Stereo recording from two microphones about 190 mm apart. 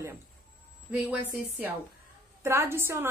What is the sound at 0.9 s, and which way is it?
A woman's voice, 10° right (ahead or behind).